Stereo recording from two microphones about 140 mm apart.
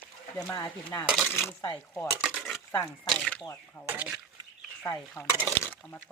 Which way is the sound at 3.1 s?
5° left (ahead or behind).